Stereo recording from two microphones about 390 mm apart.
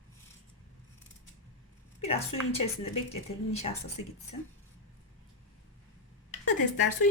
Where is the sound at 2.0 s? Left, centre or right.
Centre.